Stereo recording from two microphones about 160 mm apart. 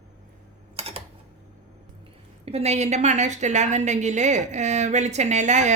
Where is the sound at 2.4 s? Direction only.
40° right (ahead or behind).